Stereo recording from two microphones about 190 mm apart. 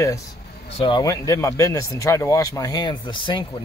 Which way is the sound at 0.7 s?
25° left (ahead or behind).